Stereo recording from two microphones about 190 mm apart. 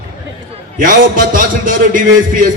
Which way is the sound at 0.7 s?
45° right (ahead or behind).